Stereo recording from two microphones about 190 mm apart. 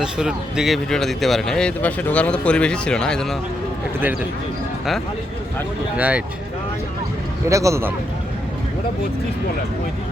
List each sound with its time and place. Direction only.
0.0 s speech: 5° right (ahead or behind)
6.0 s speech: 10° right (ahead or behind)
7.4 s speech: 15° right (ahead or behind)